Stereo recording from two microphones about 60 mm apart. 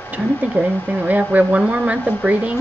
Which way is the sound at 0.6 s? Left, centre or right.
Right.